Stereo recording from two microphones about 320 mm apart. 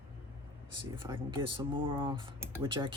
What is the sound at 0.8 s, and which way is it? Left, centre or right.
Speech, centre.